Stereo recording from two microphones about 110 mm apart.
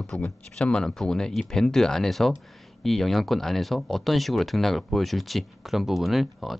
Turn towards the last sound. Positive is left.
turn(degrees=0)  # may be behind; listen again after turning